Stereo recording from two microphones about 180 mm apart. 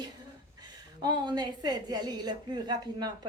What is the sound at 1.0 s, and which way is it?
A woman's voice, 25° right (ahead or behind).